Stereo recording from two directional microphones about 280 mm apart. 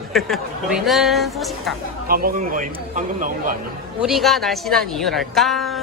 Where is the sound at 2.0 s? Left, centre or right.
Right.